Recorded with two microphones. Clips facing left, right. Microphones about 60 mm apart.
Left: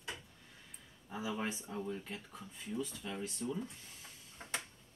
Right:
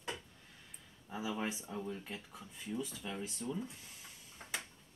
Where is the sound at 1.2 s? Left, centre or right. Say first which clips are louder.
Even; centre.